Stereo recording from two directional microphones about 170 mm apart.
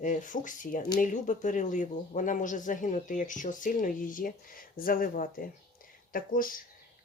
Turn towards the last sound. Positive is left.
turn(degrees=55)  # may be behind; listen again after turning